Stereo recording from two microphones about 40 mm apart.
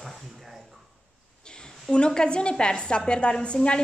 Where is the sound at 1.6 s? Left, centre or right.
Left.